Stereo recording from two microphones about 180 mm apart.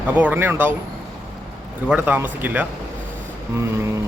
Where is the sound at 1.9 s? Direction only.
10° right (ahead or behind).